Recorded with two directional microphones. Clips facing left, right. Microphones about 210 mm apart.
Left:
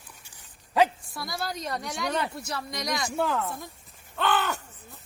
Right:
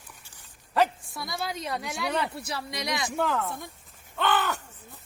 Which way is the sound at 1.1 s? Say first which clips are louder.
Even; centre (ahead or behind).